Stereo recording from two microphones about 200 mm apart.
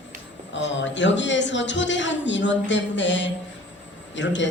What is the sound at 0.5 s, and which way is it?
A woman's voice, 65° left (ahead or behind).